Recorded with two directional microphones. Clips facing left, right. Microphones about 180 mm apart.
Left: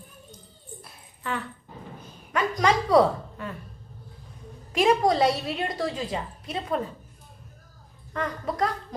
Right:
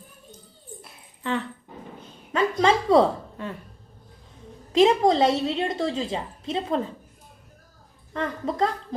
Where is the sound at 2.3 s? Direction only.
25° right (ahead or behind).